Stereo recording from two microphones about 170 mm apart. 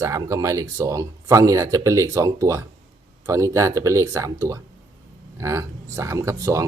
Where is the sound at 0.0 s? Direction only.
15° right (ahead or behind).